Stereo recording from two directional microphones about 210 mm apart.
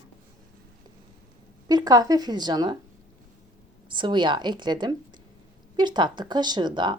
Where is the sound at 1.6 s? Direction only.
20° right (ahead or behind).